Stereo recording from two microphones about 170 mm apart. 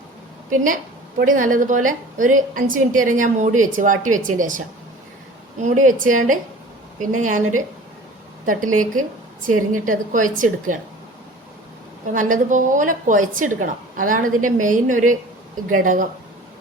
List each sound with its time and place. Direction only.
0.5 s a woman's voice: 50° right (ahead or behind)
8.4 s a woman's voice: 50° right (ahead or behind)
12.1 s a woman's voice: 50° right (ahead or behind)